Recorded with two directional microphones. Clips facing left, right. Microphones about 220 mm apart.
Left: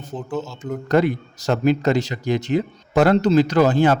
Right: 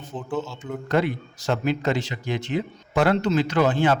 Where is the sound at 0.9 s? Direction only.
40° left (ahead or behind).